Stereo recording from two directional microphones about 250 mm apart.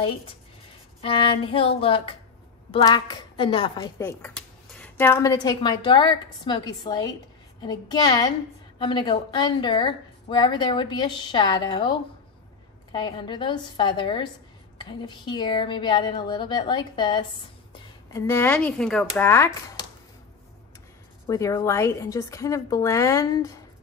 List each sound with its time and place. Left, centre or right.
1.0 s a woman's voice: centre
21.3 s a woman's voice: centre